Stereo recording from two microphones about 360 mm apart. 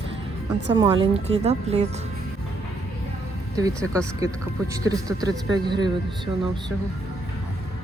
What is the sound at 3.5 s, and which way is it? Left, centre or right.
Speech, centre.